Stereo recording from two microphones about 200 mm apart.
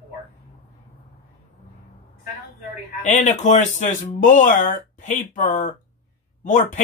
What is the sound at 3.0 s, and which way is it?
Speech, 35° left (ahead or behind).